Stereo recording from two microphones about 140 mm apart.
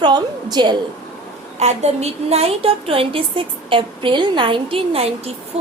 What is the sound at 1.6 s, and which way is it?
A woman's voice, 50° right (ahead or behind).